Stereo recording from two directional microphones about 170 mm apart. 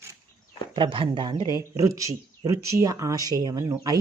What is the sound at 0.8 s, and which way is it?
Speech, 30° right (ahead or behind).